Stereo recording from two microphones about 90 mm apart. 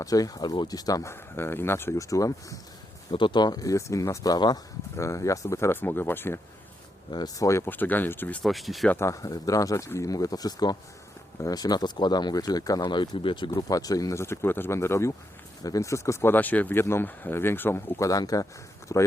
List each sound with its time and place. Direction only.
0.0 s speech: 45° left (ahead or behind)
1.1 s speech: 25° left (ahead or behind)
3.1 s speech: 65° left (ahead or behind)
4.9 s speech: 35° left (ahead or behind)
7.1 s speech: 50° left (ahead or behind)
7.4 s speech: 30° left (ahead or behind)
7.7 s speech: 20° left (ahead or behind)
8.4 s speech: centre (ahead or behind)
9.0 s speech: 35° left (ahead or behind)
12.8 s speech: 60° left (ahead or behind)
13.6 s speech: 45° left (ahead or behind)
16.3 s speech: 20° left (ahead or behind); by 19.1 s 40° left (ahead or behind)